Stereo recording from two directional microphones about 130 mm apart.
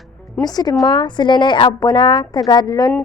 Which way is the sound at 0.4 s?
30° left (ahead or behind).